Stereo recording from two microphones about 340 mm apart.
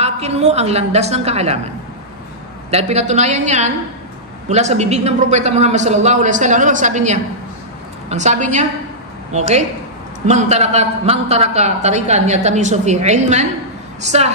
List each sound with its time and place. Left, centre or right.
0.0 s a man's voice: centre
2.7 s a man's voice: centre